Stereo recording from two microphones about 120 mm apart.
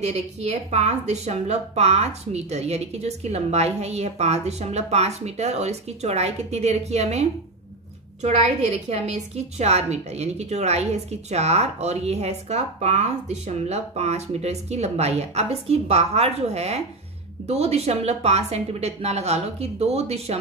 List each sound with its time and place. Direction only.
0.0 s a woman's voice: 65° right (ahead or behind)